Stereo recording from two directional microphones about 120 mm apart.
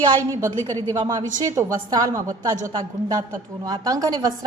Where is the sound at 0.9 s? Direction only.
30° right (ahead or behind).